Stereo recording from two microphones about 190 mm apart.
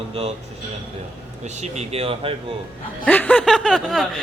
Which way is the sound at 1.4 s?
35° right (ahead or behind).